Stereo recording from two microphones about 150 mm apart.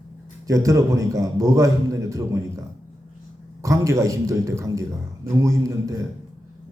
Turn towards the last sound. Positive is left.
turn(degrees=-25)  # may be behind; listen again after turning